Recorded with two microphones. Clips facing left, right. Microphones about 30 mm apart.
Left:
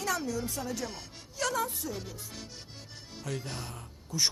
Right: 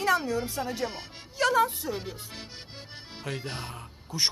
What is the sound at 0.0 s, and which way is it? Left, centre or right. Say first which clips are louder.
Speech: right 6 dB; right.